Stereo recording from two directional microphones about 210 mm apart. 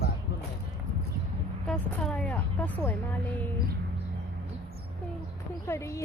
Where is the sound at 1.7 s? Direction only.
5° left (ahead or behind).